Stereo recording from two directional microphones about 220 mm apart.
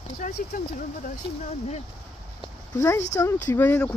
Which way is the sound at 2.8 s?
10° left (ahead or behind).